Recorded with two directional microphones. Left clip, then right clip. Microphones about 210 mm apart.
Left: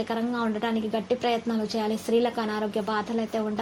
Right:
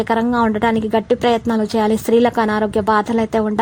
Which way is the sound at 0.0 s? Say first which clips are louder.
Right 12 dB; 45° right (ahead or behind).